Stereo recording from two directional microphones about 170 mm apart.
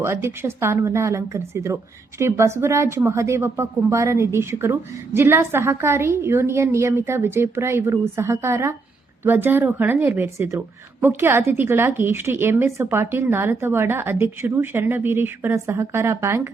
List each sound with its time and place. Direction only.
0.0 s speech: 15° right (ahead or behind)